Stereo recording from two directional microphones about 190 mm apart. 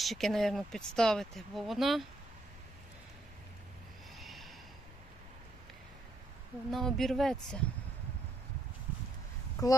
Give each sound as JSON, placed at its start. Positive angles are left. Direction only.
{"t": 0.0, "sound": "speech", "side_deg": 0}
{"t": 4.2, "sound": "snort", "side_deg": 0}
{"t": 6.7, "sound": "speech", "side_deg": 0}
{"t": 9.6, "sound": "speech", "side_deg": 20}